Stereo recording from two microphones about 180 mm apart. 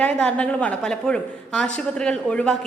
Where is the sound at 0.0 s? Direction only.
5° left (ahead or behind).